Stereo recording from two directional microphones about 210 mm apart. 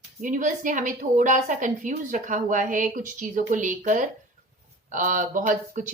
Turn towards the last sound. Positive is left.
turn(degrees=-40)  # may be behind; listen again after turning